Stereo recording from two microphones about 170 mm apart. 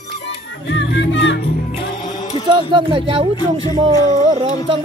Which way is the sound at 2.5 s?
30° right (ahead or behind).